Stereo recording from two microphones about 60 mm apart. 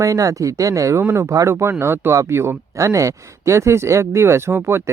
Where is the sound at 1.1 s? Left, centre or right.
Right.